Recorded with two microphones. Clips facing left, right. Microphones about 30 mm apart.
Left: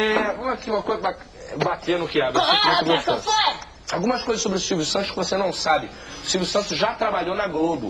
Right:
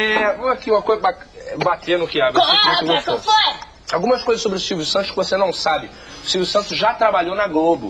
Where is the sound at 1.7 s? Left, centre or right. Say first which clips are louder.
Right 6 dB; right.